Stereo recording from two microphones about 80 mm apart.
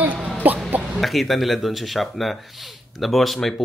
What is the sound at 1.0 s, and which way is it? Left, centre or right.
Speech, centre.